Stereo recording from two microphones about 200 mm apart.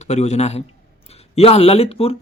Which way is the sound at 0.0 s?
35° left (ahead or behind).